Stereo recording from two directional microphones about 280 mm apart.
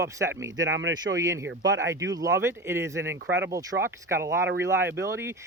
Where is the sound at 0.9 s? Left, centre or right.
Centre.